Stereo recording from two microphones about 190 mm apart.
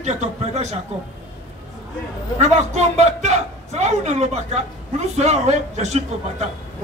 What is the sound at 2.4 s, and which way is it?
A man's voice, 35° right (ahead or behind).